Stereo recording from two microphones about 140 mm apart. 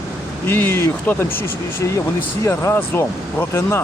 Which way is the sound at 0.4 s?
15° left (ahead or behind).